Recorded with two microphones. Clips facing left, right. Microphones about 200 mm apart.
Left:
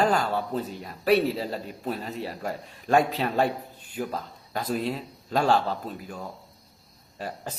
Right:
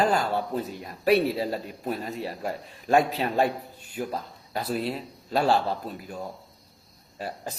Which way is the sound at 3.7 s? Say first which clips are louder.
Right 1 dB; 45° right (ahead or behind).